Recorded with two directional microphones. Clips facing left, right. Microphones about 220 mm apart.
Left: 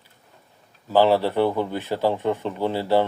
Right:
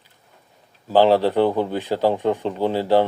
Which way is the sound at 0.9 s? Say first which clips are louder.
Right 3 dB; 15° right (ahead or behind).